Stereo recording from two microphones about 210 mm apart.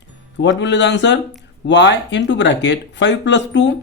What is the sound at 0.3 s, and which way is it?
Speech, 55° left (ahead or behind).